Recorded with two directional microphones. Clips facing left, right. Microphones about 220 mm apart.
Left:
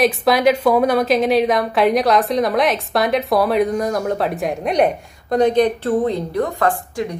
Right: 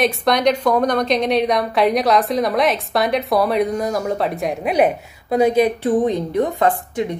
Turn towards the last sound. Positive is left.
turn(degrees=-20)  # may be behind; listen again after turning